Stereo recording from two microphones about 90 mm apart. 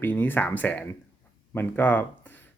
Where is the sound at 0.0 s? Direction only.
20° left (ahead or behind).